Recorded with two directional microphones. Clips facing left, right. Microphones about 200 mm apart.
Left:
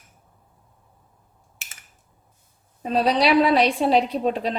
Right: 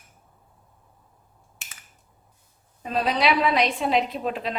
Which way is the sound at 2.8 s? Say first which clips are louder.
Left 3 dB; 35° left (ahead or behind).